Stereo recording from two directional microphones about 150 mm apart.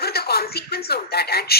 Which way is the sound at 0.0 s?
90° left.